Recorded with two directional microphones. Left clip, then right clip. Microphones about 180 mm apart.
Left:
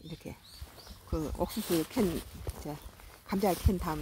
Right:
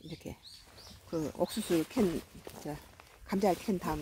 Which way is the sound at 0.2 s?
10° left (ahead or behind).